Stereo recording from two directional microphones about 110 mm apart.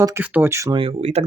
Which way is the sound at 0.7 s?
55° right (ahead or behind).